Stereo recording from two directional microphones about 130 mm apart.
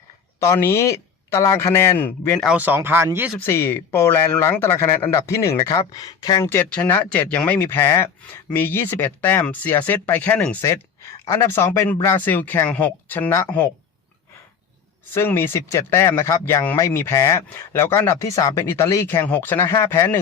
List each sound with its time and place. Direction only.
0.3 s speech: 20° left (ahead or behind)
2.6 s speech: 15° right (ahead or behind)
3.3 s speech: 20° left (ahead or behind)
6.5 s speech: 15° left (ahead or behind)
15.1 s speech: 20° left (ahead or behind)